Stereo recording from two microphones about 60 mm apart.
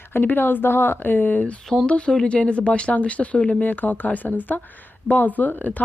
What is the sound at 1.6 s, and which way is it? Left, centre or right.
Speech, centre.